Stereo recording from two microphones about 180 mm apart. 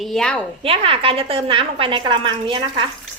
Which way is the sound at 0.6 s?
30° right (ahead or behind).